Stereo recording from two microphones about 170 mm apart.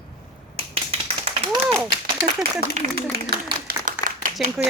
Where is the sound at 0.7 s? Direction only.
35° right (ahead or behind).